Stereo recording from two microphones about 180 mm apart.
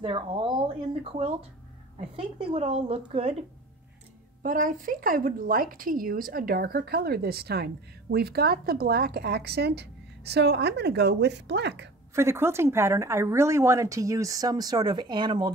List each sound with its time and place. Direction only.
0.0 s a woman's voice: 30° right (ahead or behind)
4.4 s speech: 45° right (ahead or behind); by 11.9 s 70° right (ahead or behind)
12.2 s a woman's voice: 15° right (ahead or behind)